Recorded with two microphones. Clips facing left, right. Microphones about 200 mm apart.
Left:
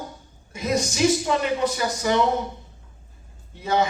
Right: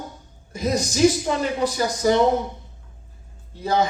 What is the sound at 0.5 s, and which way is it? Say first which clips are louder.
Speech: right 2 dB; 35° right (ahead or behind).